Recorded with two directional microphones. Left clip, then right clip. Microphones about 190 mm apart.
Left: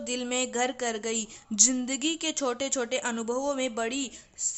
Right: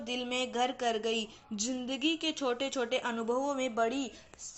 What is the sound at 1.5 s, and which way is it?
A woman's voice, 35° left (ahead or behind).